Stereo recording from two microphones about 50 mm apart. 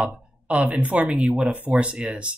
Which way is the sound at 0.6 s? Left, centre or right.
Right.